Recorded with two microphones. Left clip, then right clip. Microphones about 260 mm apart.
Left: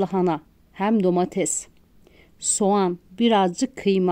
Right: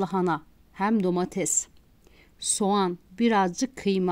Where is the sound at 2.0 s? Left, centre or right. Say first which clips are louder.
Left 3 dB; centre.